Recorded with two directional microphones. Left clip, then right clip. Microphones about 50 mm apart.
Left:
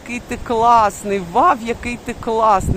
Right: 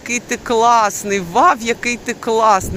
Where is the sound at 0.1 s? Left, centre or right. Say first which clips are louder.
Right 3 dB; left; by 1.5 s centre.